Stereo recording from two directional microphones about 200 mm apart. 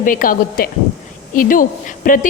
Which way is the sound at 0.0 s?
45° left (ahead or behind).